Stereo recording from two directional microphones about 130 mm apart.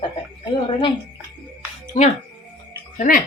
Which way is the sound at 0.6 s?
40° left (ahead or behind).